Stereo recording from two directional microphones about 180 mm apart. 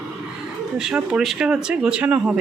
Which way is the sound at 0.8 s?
Centre (ahead or behind).